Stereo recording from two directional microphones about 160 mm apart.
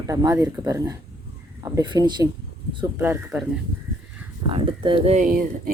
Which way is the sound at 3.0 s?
15° right (ahead or behind).